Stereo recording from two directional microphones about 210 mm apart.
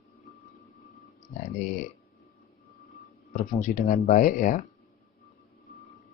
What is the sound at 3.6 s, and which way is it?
Speech, 40° left (ahead or behind).